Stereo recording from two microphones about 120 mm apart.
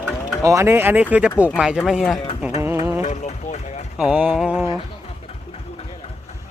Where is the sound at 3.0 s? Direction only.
70° left (ahead or behind).